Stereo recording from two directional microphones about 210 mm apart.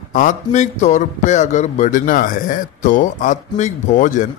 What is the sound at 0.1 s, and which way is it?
A man's voice, 35° left (ahead or behind).